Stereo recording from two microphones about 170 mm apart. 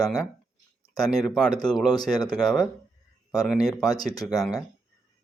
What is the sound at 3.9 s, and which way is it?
Speech, 20° left (ahead or behind).